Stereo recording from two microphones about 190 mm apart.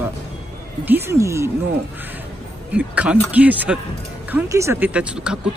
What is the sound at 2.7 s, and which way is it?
Speech, 5° right (ahead or behind).